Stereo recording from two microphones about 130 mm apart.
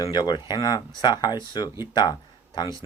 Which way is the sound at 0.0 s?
35° left (ahead or behind).